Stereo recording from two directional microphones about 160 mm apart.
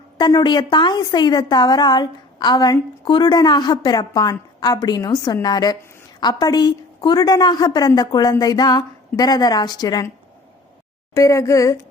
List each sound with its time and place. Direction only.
0.2 s a woman's voice: 25° left (ahead or behind)
11.1 s a woman's voice: 20° left (ahead or behind)